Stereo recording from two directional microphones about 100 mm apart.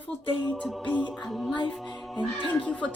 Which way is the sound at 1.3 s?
Centre (ahead or behind).